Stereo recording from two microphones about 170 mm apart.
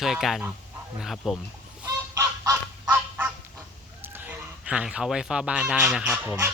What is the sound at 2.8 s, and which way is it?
Fowl, 10° right (ahead or behind).